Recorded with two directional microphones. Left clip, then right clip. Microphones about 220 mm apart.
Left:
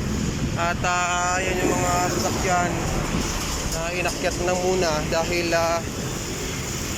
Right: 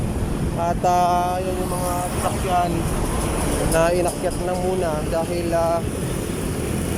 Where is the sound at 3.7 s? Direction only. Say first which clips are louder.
Right 10 dB; 35° right (ahead or behind).